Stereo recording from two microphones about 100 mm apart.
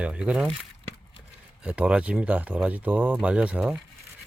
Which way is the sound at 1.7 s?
10° right (ahead or behind).